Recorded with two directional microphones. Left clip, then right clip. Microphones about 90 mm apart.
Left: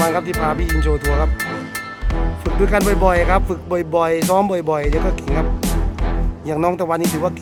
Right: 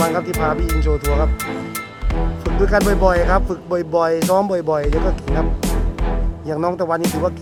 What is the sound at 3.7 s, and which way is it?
Music, 25° left (ahead or behind).